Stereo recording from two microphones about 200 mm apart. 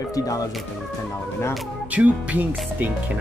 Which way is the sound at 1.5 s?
5° right (ahead or behind).